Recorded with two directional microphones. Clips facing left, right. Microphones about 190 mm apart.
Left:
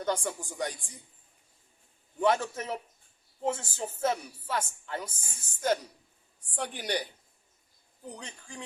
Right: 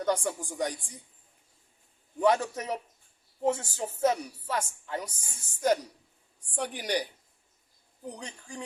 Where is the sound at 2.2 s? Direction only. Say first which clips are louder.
Right 2 dB; 15° right (ahead or behind).